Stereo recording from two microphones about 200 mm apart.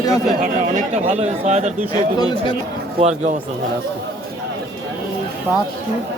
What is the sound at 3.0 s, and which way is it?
Speech, 35° right (ahead or behind).